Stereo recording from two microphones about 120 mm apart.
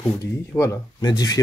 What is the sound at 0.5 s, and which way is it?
Speech, 30° left (ahead or behind).